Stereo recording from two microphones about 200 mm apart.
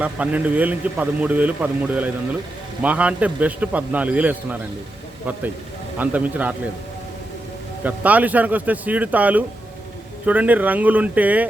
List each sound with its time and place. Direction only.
0.0 s speech: 5° right (ahead or behind)
6.0 s speech: 10° right (ahead or behind)
7.9 s speech: 10° right (ahead or behind)